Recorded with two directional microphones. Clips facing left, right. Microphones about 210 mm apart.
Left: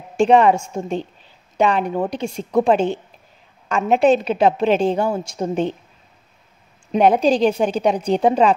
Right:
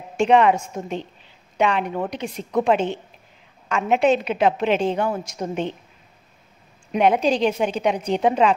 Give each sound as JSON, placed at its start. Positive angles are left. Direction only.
{"t": 0.2, "sound": "a woman's voice", "side_deg": 35}
{"t": 6.9, "sound": "a woman's voice", "side_deg": 35}